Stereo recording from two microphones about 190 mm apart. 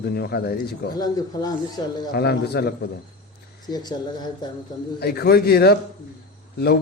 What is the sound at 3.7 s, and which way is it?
Speech, 20° left (ahead or behind).